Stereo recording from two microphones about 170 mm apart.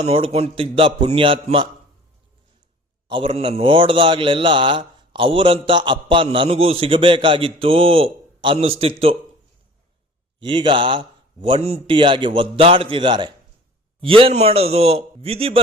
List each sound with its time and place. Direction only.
0.0 s a man's voice: 35° right (ahead or behind)
3.1 s a man's voice: 30° right (ahead or behind)
10.4 s a man's voice: 30° right (ahead or behind)